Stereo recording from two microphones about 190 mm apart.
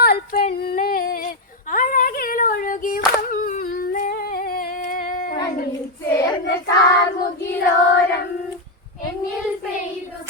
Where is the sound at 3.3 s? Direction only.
50° left (ahead or behind).